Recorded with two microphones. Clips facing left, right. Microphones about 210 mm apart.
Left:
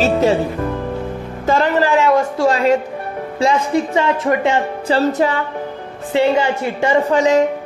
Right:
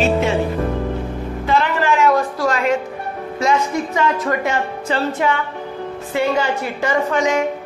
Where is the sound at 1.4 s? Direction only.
45° left (ahead or behind).